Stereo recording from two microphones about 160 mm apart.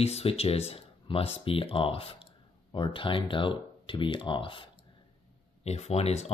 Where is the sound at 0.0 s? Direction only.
40° left (ahead or behind).